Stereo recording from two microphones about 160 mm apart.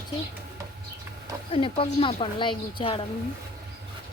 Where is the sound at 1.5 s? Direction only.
35° left (ahead or behind).